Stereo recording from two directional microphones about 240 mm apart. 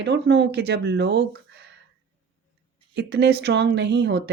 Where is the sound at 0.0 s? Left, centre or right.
Right.